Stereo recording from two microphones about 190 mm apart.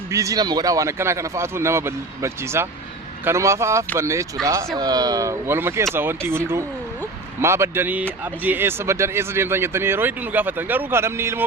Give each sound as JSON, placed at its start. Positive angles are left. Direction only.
{"t": 0.1, "sound": "speech", "side_deg": -15}